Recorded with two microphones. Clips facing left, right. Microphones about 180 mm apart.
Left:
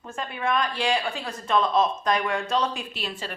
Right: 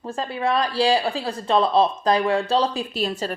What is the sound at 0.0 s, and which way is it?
Speech, 35° right (ahead or behind).